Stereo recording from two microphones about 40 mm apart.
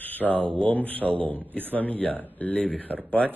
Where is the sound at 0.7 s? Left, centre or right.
Left.